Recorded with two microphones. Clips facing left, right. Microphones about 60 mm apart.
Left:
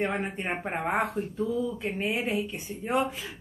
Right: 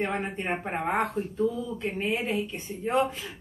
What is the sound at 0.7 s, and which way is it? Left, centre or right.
Speech, centre.